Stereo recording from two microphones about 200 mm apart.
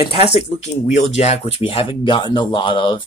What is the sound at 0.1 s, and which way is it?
Speech, 30° left (ahead or behind).